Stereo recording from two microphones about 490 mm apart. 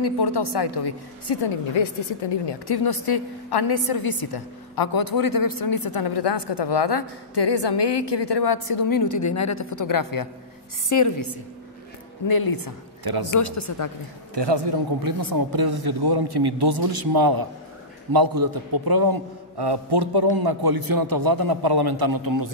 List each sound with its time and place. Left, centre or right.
0.0 s a woman's voice: left
12.3 s a woman's voice: left
14.3 s a man's voice: right